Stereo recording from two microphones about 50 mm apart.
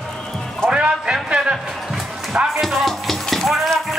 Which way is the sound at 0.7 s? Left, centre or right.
Centre.